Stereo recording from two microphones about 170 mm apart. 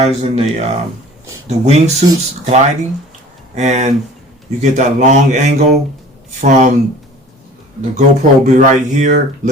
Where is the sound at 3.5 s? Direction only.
45° right (ahead or behind).